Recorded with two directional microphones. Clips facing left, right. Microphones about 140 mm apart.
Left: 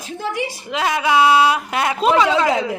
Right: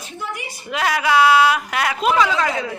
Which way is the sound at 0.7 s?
20° left (ahead or behind).